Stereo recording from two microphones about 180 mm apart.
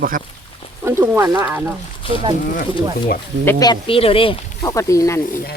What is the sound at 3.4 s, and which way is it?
Speech, 10° left (ahead or behind).